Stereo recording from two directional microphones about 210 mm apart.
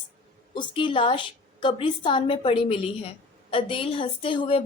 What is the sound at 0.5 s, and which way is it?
A woman's voice, 25° left (ahead or behind).